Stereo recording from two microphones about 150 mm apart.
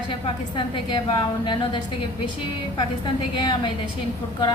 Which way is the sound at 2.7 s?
30° left (ahead or behind).